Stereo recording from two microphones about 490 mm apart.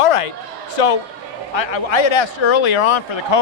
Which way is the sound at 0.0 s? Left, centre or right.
Left.